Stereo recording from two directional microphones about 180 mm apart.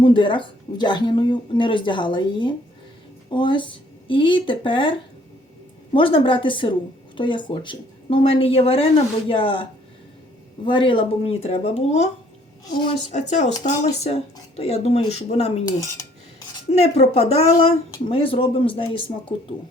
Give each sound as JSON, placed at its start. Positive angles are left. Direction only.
{"t": 0.0, "sound": "speech", "side_deg": 30}
{"t": 10.7, "sound": "speech", "side_deg": 30}
{"t": 16.7, "sound": "speech", "side_deg": 35}